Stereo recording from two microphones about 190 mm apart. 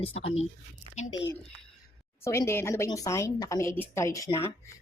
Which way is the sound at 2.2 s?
15° left (ahead or behind).